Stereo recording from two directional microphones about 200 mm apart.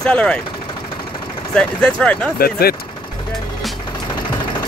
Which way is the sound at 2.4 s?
50° left (ahead or behind).